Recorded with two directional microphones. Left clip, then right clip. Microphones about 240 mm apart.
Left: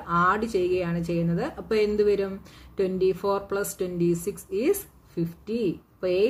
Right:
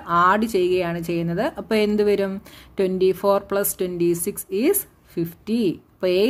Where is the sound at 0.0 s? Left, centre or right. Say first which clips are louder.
Right 5 dB; right.